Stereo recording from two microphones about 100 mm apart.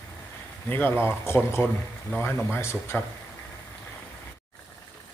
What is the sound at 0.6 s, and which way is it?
Speech, 20° left (ahead or behind).